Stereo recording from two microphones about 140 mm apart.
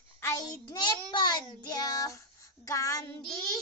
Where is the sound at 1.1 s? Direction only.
30° left (ahead or behind).